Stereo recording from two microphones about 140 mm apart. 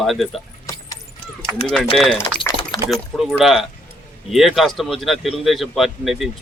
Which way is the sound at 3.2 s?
5° right (ahead or behind).